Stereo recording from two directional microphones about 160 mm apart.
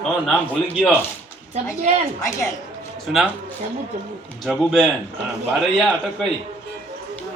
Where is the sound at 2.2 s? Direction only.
20° left (ahead or behind).